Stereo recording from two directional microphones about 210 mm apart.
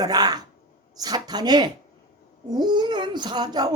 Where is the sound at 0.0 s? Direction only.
20° right (ahead or behind).